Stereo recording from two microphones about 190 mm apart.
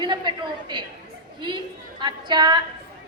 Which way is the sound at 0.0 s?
25° right (ahead or behind).